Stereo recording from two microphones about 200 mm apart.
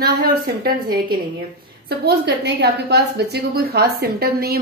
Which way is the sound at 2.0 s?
55° right (ahead or behind).